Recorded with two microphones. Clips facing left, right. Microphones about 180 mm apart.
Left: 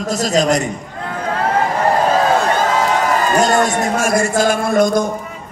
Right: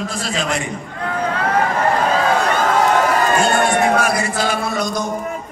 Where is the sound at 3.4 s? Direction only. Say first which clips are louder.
Left 1 dB; 40° left (ahead or behind).